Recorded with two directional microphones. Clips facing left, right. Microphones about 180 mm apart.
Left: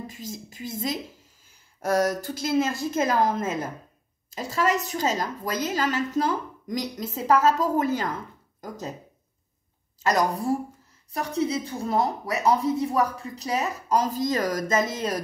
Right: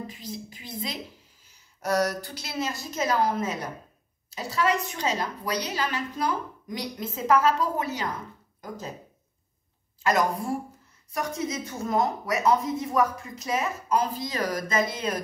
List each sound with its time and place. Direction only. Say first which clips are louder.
0.0 s a woman's voice: even; 45° left (ahead or behind)
3.4 s speech: left 3 dB; 90° left
4.4 s a woman's voice: left 1 dB; 45° left (ahead or behind)
11.1 s speech: left 4 dB; 35° left (ahead or behind)